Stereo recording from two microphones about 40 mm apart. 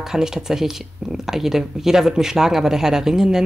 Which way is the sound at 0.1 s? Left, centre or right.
Centre.